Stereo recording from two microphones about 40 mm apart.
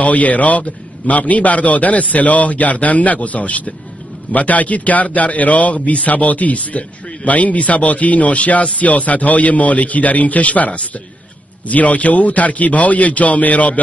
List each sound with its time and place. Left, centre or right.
0.0 s speech: left